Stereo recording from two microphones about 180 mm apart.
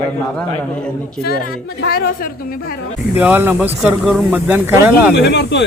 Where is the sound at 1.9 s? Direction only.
55° left (ahead or behind).